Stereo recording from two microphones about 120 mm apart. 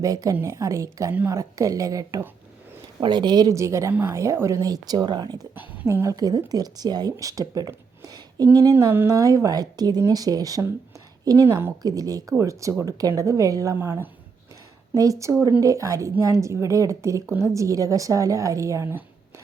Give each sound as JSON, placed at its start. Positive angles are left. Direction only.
{"t": 0.0, "sound": "a woman's voice", "side_deg": -30}
{"t": 3.0, "sound": "a woman's voice", "side_deg": -40}
{"t": 5.5, "sound": "a woman's voice", "side_deg": -15}
{"t": 7.7, "sound": "a sound", "side_deg": -30}
{"t": 8.5, "sound": "a woman's voice", "side_deg": -30}